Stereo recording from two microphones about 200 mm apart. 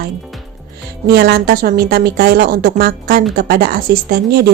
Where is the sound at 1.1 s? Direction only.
50° right (ahead or behind).